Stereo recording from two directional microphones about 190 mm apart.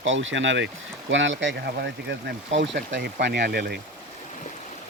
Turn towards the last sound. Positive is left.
turn(degrees=-55)  # may be behind; listen again after turning